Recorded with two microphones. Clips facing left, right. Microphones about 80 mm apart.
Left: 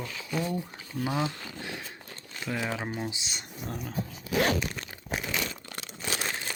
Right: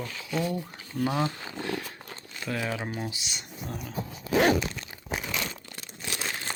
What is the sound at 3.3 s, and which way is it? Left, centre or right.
Speech, left.